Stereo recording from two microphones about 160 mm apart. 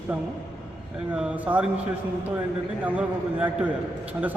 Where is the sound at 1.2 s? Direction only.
10° right (ahead or behind).